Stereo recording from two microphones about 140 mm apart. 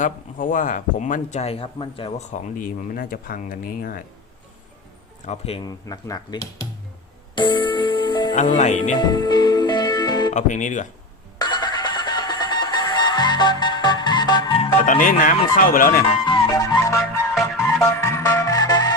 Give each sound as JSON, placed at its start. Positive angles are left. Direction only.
{"t": 0.0, "sound": "speech", "side_deg": 70}
{"t": 2.3, "sound": "speech", "side_deg": 70}
{"t": 5.2, "sound": "speech", "side_deg": 50}
{"t": 5.6, "sound": "speech", "side_deg": 25}
{"t": 7.3, "sound": "music", "side_deg": 35}
{"t": 8.5, "sound": "speech", "side_deg": 60}
{"t": 9.0, "sound": "music", "side_deg": 30}
{"t": 10.3, "sound": "speech", "side_deg": 65}
{"t": 11.3, "sound": "music", "side_deg": 30}
{"t": 15.0, "sound": "speech", "side_deg": 75}
{"t": 16.0, "sound": "music", "side_deg": 35}